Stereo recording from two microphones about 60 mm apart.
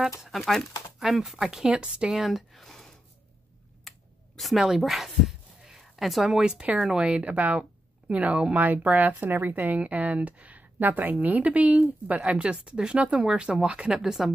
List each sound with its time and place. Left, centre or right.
0.2 s speech: centre
2.2 s speech: centre
4.4 s speech: centre